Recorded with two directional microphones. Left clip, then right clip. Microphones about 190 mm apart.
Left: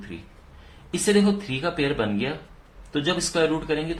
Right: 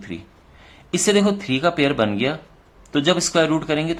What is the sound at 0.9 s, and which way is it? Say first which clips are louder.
Speech: right 4 dB; 40° right (ahead or behind).